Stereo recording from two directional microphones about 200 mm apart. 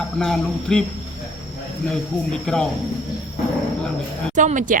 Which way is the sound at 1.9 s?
5° left (ahead or behind).